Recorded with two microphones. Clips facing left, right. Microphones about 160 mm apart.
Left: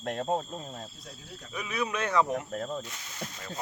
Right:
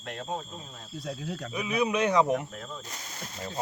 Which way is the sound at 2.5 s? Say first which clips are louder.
Left 7 dB; 45° left (ahead or behind).